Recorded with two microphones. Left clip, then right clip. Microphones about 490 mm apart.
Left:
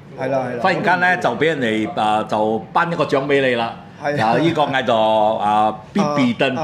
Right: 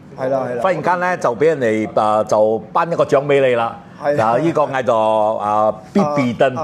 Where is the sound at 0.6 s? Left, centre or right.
Right.